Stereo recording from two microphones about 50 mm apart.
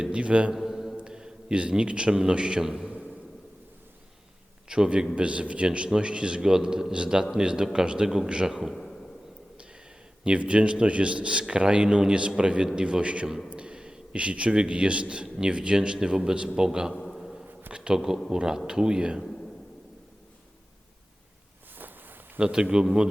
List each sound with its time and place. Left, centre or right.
0.0 s a man's voice: right
0.5 s a sound: centre
1.0 s a man's voice: centre
4.7 s a man's voice: centre
8.7 s a sound: centre
10.2 s a man's voice: right
17.0 s a sound: centre
17.7 s a man's voice: centre
21.8 s walk: right
22.4 s a man's voice: centre